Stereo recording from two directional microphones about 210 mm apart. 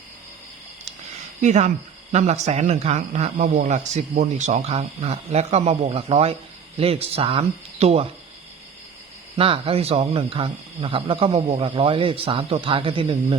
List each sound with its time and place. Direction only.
1.4 s speech: 35° right (ahead or behind)
9.3 s speech: 25° right (ahead or behind)